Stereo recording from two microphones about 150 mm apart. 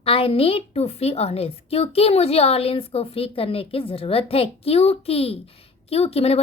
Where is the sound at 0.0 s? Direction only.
40° left (ahead or behind).